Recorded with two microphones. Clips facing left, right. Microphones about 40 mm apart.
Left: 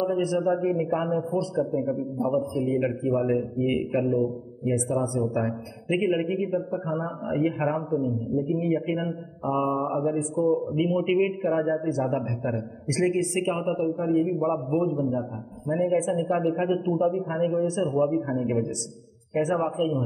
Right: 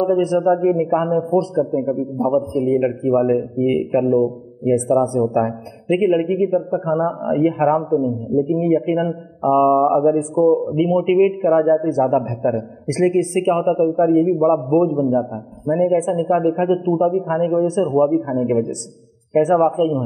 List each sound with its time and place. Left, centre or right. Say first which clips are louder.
0.0 s a man's voice: right 8 dB; centre
10.0 s a man's voice: right 9 dB; centre
15.7 s a man's voice: right 7 dB; centre
18.1 s a man's voice: right 8 dB; centre